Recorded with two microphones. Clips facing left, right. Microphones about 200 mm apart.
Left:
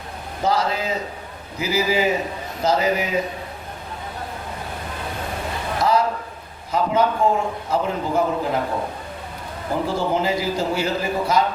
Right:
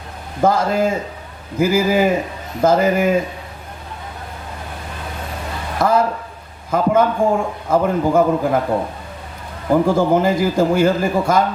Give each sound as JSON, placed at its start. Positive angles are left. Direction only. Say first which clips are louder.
{"t": 0.4, "sound": "a man's voice", "louder": "right 6 dB", "side_deg": -50}
{"t": 5.8, "sound": "a man's voice", "louder": "right 4 dB", "side_deg": -50}
{"t": 9.8, "sound": "a man's voice", "louder": "right 5 dB", "side_deg": -50}